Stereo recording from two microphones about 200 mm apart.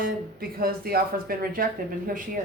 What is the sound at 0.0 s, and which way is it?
Speech, 45° right (ahead or behind).